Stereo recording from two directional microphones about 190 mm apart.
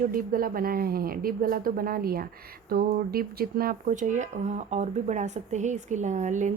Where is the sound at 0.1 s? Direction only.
50° right (ahead or behind).